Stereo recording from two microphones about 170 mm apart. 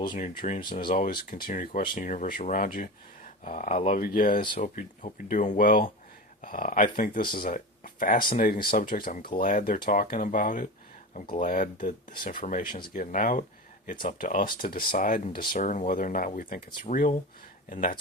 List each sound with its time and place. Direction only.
0.1 s speech: 50° left (ahead or behind)